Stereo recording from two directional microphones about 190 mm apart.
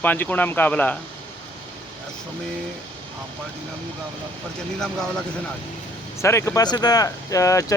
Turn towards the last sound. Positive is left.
turn(degrees=15)  # may be behind; listen again after turning